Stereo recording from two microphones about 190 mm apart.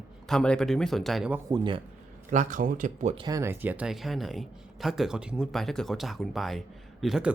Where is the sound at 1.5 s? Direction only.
25° right (ahead or behind).